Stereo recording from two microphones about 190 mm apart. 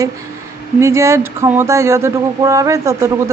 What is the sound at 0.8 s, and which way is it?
A woman's voice, 15° right (ahead or behind).